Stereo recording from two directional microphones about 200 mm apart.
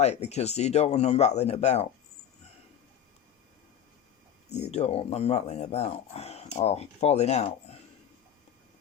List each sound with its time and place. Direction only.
0.0 s speech: 35° left (ahead or behind)
4.5 s speech: 35° left (ahead or behind)